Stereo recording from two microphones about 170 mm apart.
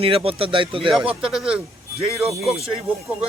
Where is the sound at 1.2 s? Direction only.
5° right (ahead or behind).